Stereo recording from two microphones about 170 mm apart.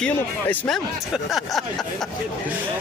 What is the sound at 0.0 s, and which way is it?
Speech, 5° left (ahead or behind).